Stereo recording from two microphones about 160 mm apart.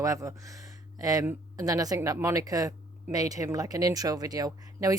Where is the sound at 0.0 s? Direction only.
20° right (ahead or behind).